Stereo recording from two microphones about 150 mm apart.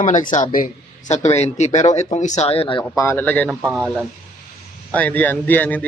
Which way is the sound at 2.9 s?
15° left (ahead or behind).